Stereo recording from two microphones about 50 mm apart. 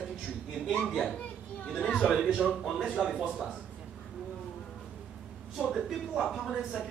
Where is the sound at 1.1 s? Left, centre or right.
Left.